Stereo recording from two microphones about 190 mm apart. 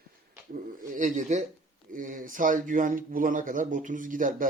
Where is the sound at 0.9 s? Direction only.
40° right (ahead or behind).